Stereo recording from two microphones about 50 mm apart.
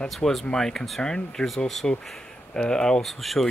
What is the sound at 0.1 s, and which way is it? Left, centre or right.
Speech, centre.